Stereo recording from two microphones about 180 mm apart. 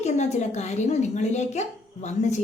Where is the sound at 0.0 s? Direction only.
40° left (ahead or behind).